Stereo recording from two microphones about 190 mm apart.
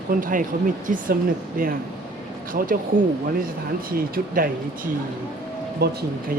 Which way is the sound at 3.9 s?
50° right (ahead or behind).